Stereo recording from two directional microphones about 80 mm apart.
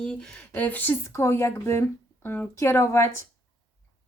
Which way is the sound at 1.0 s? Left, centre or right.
Left.